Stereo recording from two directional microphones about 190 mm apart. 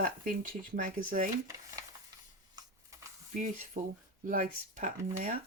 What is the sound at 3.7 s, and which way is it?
Speech, 40° right (ahead or behind).